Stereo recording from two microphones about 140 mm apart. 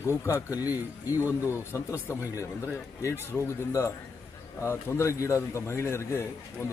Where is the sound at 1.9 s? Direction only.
20° left (ahead or behind).